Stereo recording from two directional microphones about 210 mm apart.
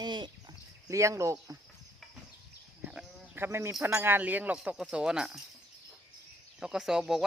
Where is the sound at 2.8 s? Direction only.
10° right (ahead or behind).